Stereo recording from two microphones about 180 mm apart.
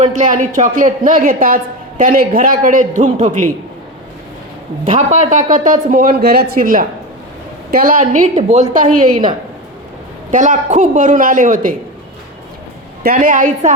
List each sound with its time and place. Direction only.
0.1 s a woman's voice: 45° right (ahead or behind)
4.9 s a woman's voice: 40° right (ahead or behind)
10.3 s a woman's voice: 45° right (ahead or behind)
13.0 s a woman's voice: 50° right (ahead or behind)